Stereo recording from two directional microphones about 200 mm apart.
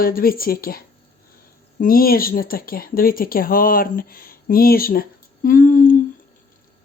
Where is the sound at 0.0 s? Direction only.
45° left (ahead or behind).